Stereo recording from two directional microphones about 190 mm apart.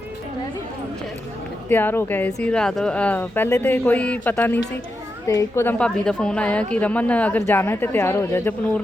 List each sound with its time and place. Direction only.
1.7 s a woman's voice: 10° left (ahead or behind)